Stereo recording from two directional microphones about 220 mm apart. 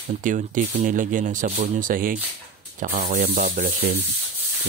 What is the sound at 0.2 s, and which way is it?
Speech, 35° right (ahead or behind).